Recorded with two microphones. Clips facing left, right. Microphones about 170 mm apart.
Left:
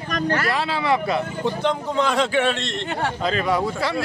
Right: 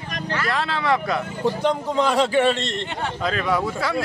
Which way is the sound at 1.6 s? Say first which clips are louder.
Even; 10° right (ahead or behind).